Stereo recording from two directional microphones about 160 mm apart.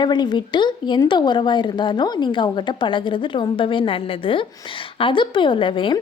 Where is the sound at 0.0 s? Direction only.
25° left (ahead or behind).